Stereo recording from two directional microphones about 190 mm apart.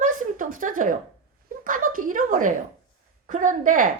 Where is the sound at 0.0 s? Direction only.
45° right (ahead or behind).